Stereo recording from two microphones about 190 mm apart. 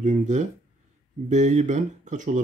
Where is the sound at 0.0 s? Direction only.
40° right (ahead or behind).